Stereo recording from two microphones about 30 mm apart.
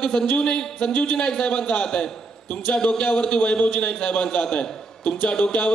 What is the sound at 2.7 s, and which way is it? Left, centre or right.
Speech, left.